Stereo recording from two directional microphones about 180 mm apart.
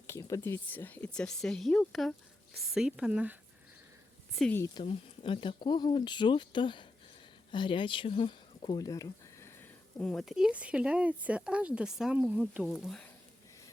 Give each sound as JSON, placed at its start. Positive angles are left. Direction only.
{"t": 0.1, "sound": "speech", "side_deg": 15}
{"t": 4.4, "sound": "speech", "side_deg": 5}
{"t": 4.6, "sound": "speech", "side_deg": 25}